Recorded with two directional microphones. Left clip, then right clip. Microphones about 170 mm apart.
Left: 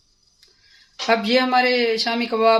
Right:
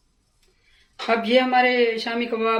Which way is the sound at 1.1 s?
60° left (ahead or behind).